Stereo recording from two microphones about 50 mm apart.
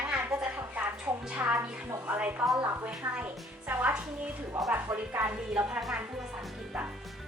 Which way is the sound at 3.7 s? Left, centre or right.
Right.